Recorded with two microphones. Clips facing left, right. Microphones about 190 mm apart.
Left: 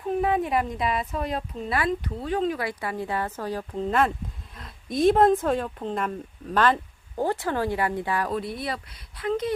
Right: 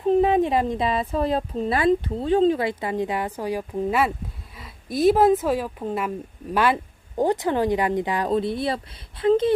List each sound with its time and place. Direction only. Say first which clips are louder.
0.0 s speech: right 6 dB; 25° right (ahead or behind)